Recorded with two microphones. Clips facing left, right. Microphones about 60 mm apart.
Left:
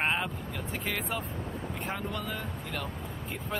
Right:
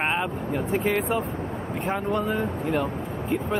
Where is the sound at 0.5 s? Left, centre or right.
Right.